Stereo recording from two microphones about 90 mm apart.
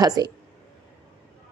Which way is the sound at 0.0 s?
45° right (ahead or behind).